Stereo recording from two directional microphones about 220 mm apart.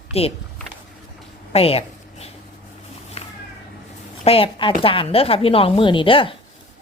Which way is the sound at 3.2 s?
30° left (ahead or behind).